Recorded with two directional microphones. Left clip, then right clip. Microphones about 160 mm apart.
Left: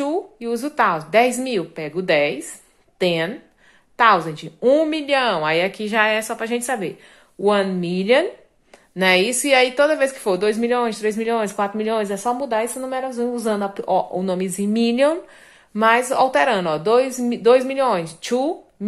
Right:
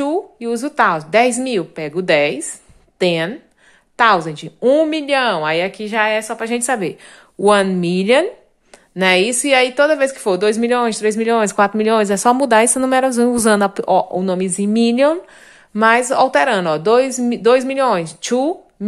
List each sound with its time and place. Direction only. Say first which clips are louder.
0.0 s a woman's voice: right 4 dB; 25° right (ahead or behind); by 6.4 s 10° right (ahead or behind)
6.4 s a woman's voice: right 4 dB; 25° right (ahead or behind); by 13.8 s 50° right (ahead or behind)
13.8 s a woman's voice: right 5 dB; 25° right (ahead or behind)